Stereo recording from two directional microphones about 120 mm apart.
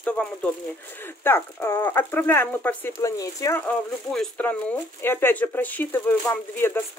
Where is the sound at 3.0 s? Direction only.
25° left (ahead or behind).